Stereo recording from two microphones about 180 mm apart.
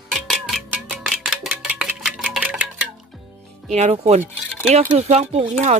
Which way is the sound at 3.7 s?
35° right (ahead or behind).